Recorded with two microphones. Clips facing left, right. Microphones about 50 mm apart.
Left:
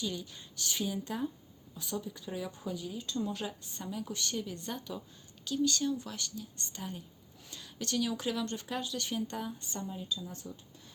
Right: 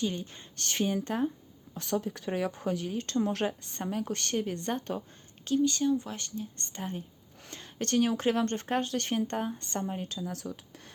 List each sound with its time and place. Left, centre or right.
0.0 s speech: right
1.7 s speech: right
5.5 s speech: right
9.6 s speech: right